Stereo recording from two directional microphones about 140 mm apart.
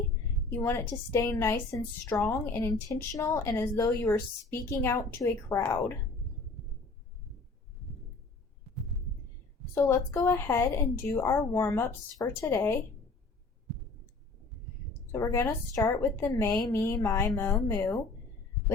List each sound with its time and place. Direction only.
0.5 s a woman's voice: 20° left (ahead or behind)
9.7 s a woman's voice: 20° left (ahead or behind)
15.1 s a woman's voice: 20° left (ahead or behind)
16.6 s a sound: 30° left (ahead or behind)
16.8 s speech: 20° left (ahead or behind)
17.7 s a sound: 30° left (ahead or behind)